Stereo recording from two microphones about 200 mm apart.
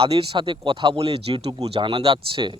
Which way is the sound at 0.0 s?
25° right (ahead or behind).